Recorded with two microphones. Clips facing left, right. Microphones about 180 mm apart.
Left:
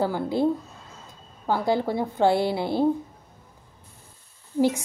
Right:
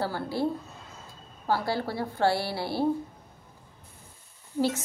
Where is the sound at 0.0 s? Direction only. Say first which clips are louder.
Left 5 dB; 20° left (ahead or behind).